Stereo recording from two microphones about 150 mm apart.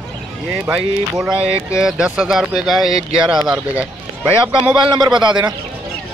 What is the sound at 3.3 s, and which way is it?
Speech, 5° right (ahead or behind).